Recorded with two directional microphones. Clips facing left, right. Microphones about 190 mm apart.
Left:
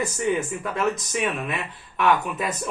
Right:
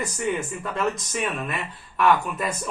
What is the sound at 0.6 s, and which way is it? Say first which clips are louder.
Speech: left 1 dB; centre (ahead or behind).